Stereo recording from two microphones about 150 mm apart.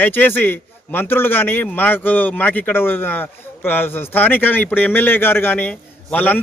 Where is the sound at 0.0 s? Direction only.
10° left (ahead or behind).